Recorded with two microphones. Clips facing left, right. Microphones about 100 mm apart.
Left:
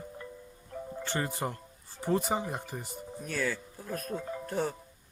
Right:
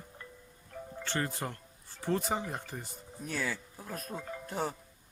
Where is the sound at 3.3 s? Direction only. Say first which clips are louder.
Left 3 dB; 15° right (ahead or behind).